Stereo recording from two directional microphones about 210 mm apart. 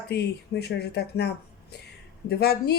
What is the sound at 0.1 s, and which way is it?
Speech, 50° left (ahead or behind).